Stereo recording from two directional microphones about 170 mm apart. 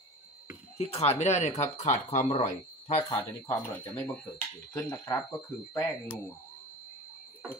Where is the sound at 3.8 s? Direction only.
10° left (ahead or behind).